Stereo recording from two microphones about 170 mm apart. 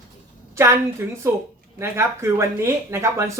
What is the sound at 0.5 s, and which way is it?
Speech, 15° right (ahead or behind).